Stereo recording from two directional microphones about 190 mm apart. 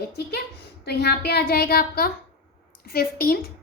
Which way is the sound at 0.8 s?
60° left (ahead or behind).